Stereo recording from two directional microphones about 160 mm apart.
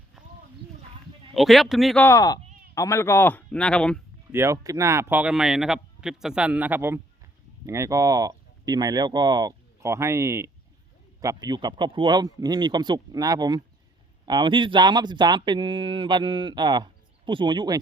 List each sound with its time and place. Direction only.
0.2 s a sound: 5° right (ahead or behind)
1.3 s a man's voice: centre (ahead or behind)
2.0 s speech: 20° left (ahead or behind); by 4.0 s 5° left (ahead or behind)
4.3 s speech: 15° right (ahead or behind)